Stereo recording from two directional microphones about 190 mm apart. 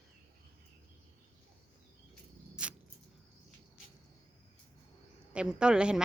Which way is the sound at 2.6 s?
5° right (ahead or behind).